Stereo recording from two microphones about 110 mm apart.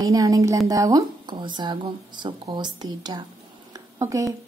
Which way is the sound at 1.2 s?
45° right (ahead or behind).